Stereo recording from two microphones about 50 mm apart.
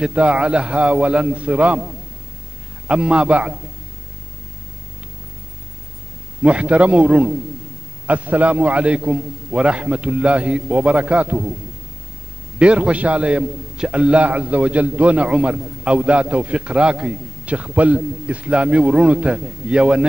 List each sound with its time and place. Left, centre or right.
0.0 s a man's voice: right
2.9 s a man's voice: centre
6.4 s a man's voice: right
12.5 s a man's voice: right